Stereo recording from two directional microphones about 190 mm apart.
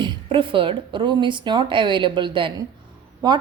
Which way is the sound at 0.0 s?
25° right (ahead or behind).